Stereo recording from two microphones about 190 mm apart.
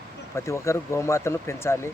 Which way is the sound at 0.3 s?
15° left (ahead or behind).